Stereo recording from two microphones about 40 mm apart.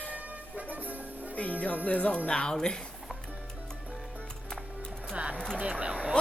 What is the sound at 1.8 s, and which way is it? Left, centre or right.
Speech, left.